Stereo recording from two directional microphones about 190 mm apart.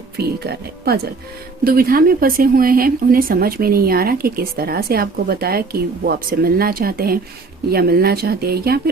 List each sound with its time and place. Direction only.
0.2 s speech: 55° right (ahead or behind)